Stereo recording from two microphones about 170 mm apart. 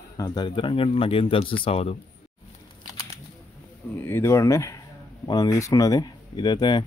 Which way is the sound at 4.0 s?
10° left (ahead or behind).